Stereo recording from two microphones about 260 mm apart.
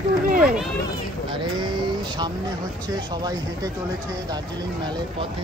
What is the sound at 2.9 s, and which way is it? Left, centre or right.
Speech, centre.